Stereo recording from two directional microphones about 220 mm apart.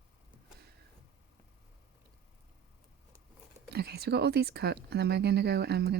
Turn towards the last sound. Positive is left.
turn(degrees=-50)  # may be behind; listen again after turning